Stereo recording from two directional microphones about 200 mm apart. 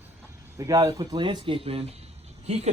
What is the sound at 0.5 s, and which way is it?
A man's voice, 15° right (ahead or behind).